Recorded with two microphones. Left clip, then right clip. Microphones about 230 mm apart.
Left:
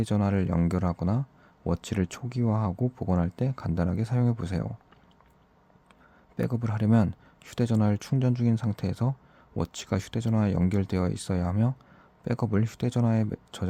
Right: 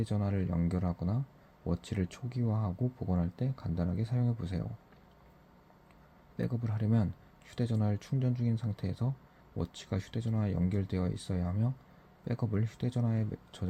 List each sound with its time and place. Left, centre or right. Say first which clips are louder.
0.0 s speech: left 8 dB; left
6.3 s speech: left 7 dB; left